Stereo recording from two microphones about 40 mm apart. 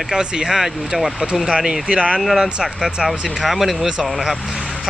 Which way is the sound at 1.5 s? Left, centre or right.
Right.